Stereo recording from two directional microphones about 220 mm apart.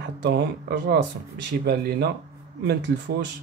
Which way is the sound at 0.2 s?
50° right (ahead or behind).